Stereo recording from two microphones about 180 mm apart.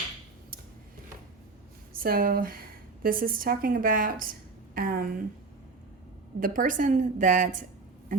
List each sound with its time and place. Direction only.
1.9 s a woman's voice: 55° right (ahead or behind)
6.4 s a woman's voice: 50° right (ahead or behind)